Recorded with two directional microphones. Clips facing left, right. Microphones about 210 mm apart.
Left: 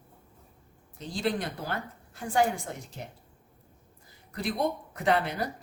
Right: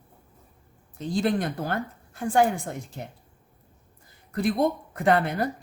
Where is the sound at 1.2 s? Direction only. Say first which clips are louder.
Right 3 dB; 50° right (ahead or behind).